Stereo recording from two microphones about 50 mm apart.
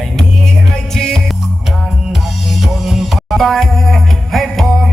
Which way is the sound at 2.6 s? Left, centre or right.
Centre.